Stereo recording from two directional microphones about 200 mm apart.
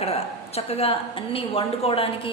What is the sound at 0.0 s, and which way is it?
A woman's voice, 30° left (ahead or behind).